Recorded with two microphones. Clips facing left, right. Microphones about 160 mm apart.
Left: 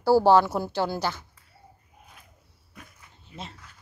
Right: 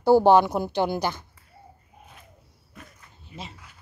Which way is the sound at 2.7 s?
Centre (ahead or behind).